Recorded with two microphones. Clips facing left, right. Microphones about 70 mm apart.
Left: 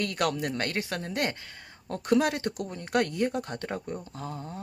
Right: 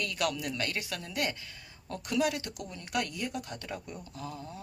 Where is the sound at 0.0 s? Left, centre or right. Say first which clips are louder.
Left 4 dB; left.